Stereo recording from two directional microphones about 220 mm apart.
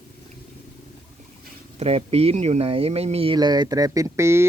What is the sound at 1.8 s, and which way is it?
Speech, 25° right (ahead or behind).